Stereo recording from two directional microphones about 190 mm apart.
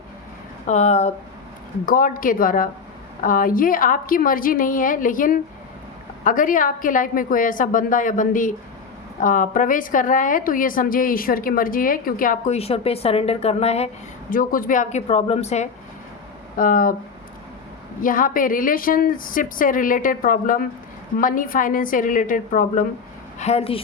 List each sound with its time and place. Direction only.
0.7 s speech: 35° left (ahead or behind)
1.9 s a woman's voice: 45° left (ahead or behind)
16.6 s a woman's voice: 45° left (ahead or behind)
18.0 s a woman's voice: 45° left (ahead or behind)
23.4 s speech: 35° left (ahead or behind)